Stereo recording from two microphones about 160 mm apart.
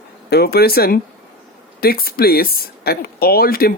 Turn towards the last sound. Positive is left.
turn(degrees=70)  # may be behind; listen again after turning